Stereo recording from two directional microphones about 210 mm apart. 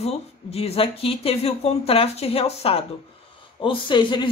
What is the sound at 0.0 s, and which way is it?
Speech, 30° left (ahead or behind).